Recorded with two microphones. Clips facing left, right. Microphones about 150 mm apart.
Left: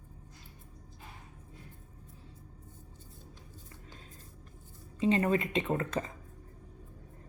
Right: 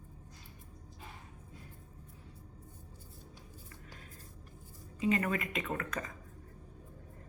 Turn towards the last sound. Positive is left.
turn(degrees=30)  # may be behind; listen again after turning